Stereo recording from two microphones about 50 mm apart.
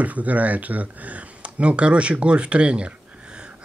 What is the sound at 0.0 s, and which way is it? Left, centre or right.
Speech, right.